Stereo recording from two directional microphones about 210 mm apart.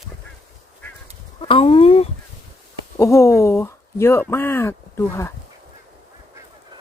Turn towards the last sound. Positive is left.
turn(degrees=10)  # may be behind; listen again after turning